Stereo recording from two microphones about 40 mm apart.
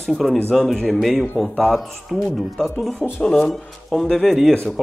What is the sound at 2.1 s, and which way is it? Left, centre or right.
Speech, centre.